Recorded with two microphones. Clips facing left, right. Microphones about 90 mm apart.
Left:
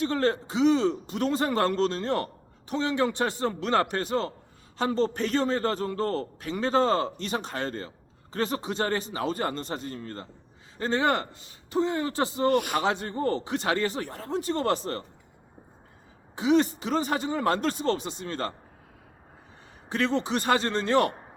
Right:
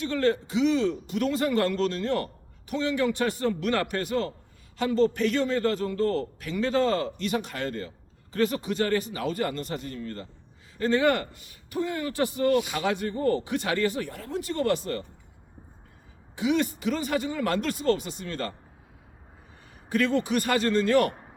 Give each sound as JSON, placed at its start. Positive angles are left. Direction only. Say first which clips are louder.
{"t": 0.0, "sound": "a man's voice", "louder": "even", "side_deg": 35}
{"t": 12.5, "sound": "a man's voice", "louder": "left 1 dB", "side_deg": 50}
{"t": 12.8, "sound": "a man's voice", "louder": "right 1 dB", "side_deg": 30}
{"t": 16.3, "sound": "a man's voice", "louder": "left 3 dB", "side_deg": 30}
{"t": 19.9, "sound": "a man's voice", "louder": "right 2 dB", "side_deg": 25}